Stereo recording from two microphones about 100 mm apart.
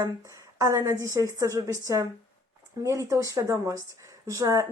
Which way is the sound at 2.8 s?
30° right (ahead or behind).